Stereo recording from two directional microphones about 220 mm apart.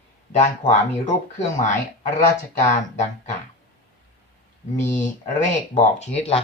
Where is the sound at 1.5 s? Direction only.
35° left (ahead or behind).